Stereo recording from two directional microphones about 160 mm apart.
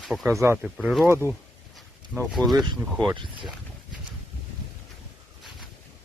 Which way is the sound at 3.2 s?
30° right (ahead or behind).